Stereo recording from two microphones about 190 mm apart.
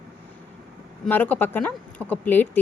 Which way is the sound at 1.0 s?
10° left (ahead or behind).